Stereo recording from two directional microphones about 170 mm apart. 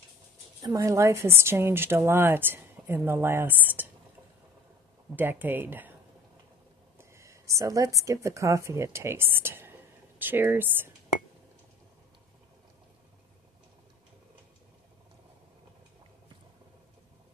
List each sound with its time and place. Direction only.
0.6 s a woman's voice: 20° right (ahead or behind)
5.1 s a woman's voice: 10° right (ahead or behind)
7.0 s a woman's voice: 15° right (ahead or behind)